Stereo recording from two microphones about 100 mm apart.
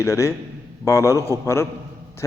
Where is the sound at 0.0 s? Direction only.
30° left (ahead or behind).